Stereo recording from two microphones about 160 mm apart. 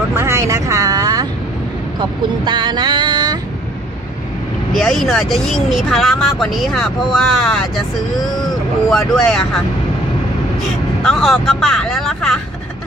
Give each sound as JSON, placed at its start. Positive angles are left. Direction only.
{"t": 0.1, "sound": "vehicle", "side_deg": -15}
{"t": 2.0, "sound": "speech", "side_deg": -30}
{"t": 4.7, "sound": "speech", "side_deg": 0}
{"t": 11.1, "sound": "speech", "side_deg": 5}